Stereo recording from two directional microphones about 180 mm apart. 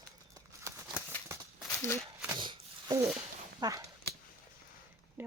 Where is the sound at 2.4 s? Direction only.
25° right (ahead or behind).